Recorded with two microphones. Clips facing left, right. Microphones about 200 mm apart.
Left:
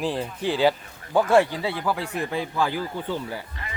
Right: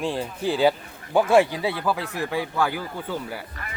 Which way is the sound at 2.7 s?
10° right (ahead or behind).